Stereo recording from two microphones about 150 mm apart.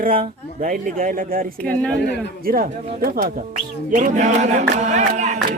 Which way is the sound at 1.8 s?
5° left (ahead or behind).